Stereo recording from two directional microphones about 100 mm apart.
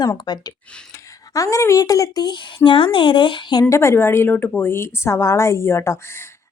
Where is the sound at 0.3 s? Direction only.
45° left (ahead or behind).